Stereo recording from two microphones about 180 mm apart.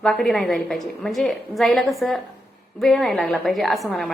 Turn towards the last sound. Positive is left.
turn(degrees=0)  # may be behind; listen again after turning